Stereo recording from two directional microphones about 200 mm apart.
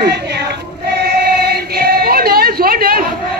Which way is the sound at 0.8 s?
55° right (ahead or behind).